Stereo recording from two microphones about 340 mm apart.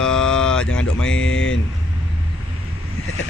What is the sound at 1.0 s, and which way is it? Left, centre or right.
Speech, left.